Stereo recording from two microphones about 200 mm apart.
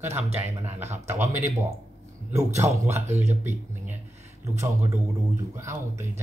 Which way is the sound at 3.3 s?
10° right (ahead or behind).